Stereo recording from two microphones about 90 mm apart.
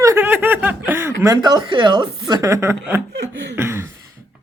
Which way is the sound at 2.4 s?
30° right (ahead or behind).